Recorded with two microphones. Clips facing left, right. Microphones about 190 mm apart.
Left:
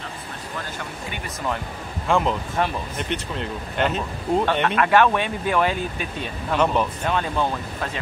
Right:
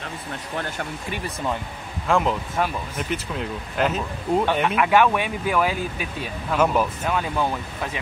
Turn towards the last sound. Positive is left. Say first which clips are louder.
# left 1 dB
turn(degrees=-5)  # may be behind; listen again after turning